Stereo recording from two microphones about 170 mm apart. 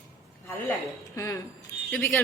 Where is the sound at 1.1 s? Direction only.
20° left (ahead or behind).